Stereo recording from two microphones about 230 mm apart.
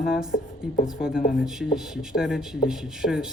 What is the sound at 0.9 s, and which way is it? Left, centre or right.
Speech, centre.